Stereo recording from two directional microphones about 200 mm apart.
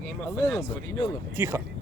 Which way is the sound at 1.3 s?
10° right (ahead or behind).